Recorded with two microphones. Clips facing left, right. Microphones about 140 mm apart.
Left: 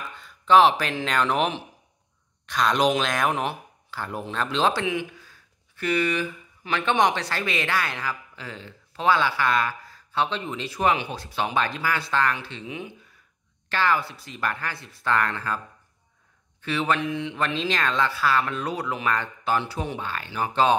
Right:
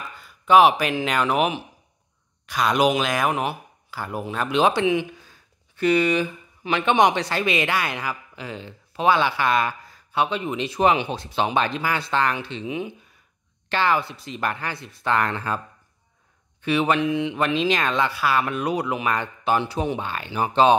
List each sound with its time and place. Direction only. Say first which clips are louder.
0.0 s speech: right 1 dB; 5° right (ahead or behind)
16.6 s speech: right 4 dB; 15° right (ahead or behind)